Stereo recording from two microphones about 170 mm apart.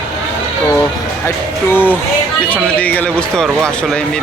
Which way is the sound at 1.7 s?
10° left (ahead or behind).